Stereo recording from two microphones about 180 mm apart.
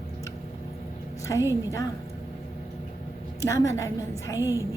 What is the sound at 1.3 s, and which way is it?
Speech, 20° left (ahead or behind).